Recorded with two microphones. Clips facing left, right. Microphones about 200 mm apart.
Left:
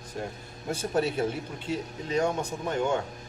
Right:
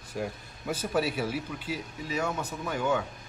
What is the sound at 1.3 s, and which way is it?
Speech, 5° right (ahead or behind).